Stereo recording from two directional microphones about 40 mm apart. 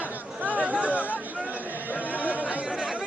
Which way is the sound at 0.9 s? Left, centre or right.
Left.